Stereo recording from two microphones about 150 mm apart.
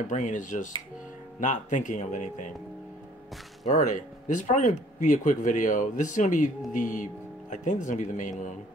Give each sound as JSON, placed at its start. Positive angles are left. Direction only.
{"t": 0.1, "sound": "speech", "side_deg": 55}
{"t": 3.6, "sound": "speech", "side_deg": 55}